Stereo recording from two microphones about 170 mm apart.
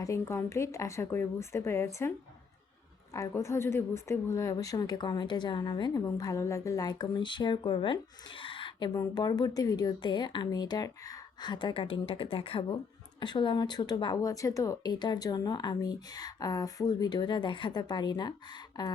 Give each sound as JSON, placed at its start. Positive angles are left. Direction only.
{"t": 0.0, "sound": "a woman's voice", "side_deg": 15}